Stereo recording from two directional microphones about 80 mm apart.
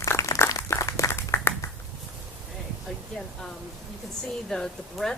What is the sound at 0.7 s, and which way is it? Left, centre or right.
Applause, left.